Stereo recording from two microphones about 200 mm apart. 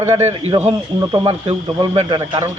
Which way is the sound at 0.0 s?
15° right (ahead or behind).